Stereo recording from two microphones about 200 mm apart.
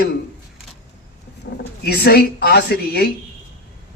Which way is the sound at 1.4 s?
55° left (ahead or behind).